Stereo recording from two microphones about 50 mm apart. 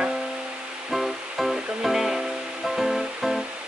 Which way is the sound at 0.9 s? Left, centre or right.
Centre.